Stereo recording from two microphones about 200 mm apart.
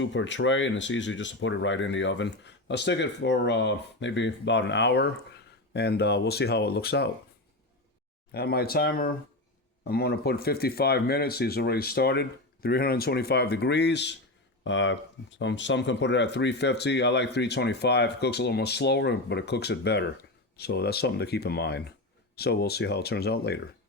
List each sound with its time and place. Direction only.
0.0 s speech: 65° left (ahead or behind)
8.3 s speech: 50° left (ahead or behind)